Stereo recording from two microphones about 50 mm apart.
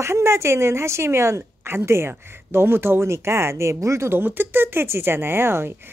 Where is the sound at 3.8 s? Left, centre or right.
Right.